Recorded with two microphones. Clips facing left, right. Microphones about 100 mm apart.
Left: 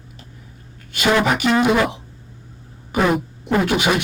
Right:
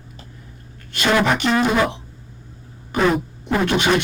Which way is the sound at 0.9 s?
5° left (ahead or behind).